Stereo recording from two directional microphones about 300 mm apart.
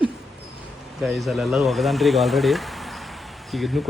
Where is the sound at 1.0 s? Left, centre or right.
Centre.